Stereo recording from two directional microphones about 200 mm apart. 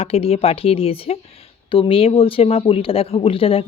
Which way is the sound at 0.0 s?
30° left (ahead or behind).